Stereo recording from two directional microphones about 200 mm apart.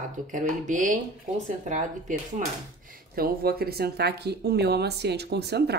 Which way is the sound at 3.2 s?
50° right (ahead or behind).